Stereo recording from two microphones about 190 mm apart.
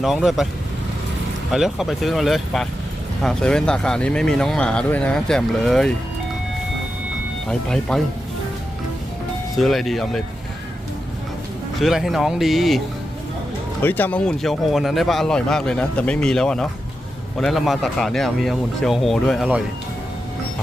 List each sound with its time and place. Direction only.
0.0 s speech: centre (ahead or behind)
1.5 s speech: centre (ahead or behind)
7.7 s speech: 5° left (ahead or behind)
9.6 s speech: centre (ahead or behind)
11.8 s speech: centre (ahead or behind)
13.8 s speech: 10° left (ahead or behind)